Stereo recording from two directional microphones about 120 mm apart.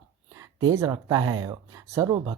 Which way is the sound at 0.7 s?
30° right (ahead or behind).